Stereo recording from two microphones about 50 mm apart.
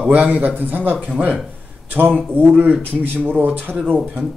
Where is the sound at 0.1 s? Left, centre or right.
Right.